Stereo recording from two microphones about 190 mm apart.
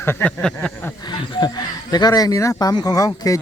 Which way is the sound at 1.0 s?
20° left (ahead or behind).